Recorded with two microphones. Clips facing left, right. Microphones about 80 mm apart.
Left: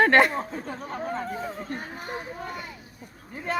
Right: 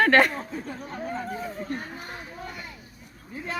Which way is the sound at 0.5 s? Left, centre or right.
Left.